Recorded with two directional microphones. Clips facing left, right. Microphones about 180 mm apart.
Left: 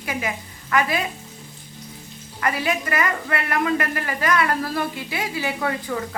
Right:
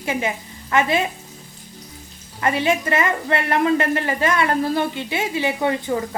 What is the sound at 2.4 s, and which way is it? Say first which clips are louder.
Speech: right 4 dB; 25° right (ahead or behind).